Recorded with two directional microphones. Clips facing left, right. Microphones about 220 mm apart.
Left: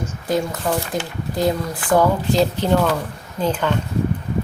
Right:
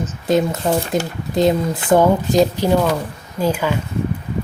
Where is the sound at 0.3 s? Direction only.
25° right (ahead or behind).